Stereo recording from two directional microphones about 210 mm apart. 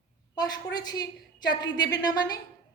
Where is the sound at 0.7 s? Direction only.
20° left (ahead or behind).